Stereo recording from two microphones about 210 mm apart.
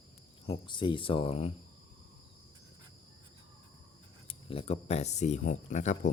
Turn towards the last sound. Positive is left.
turn(degrees=35)  # may be behind; listen again after turning